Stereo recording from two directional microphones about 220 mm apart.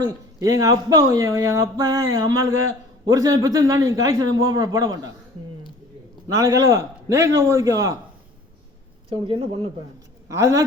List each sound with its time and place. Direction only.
0.0 s speech: 15° right (ahead or behind)
4.3 s speech: 65° right (ahead or behind)
4.5 s speech: 15° right (ahead or behind)
6.2 s speech: 15° right (ahead or behind)
9.0 s speech: 25° right (ahead or behind)